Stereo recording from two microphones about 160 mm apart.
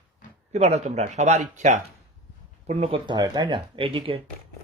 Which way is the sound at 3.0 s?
25° right (ahead or behind).